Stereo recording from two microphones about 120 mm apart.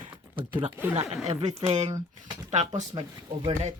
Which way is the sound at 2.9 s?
40° right (ahead or behind).